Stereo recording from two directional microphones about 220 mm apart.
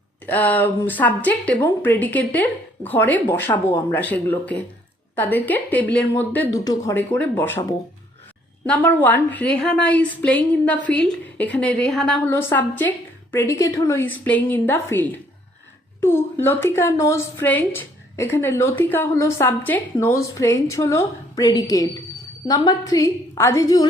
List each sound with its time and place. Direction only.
0.3 s a woman's voice: 10° left (ahead or behind)